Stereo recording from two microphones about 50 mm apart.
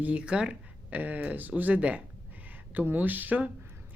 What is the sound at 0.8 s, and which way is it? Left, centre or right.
Speech, right.